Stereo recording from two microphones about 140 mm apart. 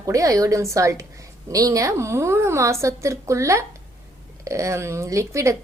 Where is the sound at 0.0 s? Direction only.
25° right (ahead or behind).